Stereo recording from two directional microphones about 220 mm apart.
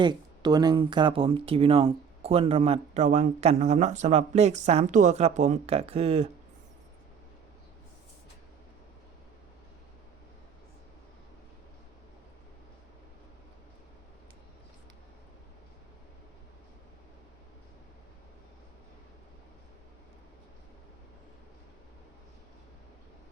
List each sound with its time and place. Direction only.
0.0 s speech: 20° right (ahead or behind)